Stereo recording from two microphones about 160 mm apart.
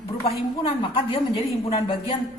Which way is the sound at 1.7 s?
35° left (ahead or behind).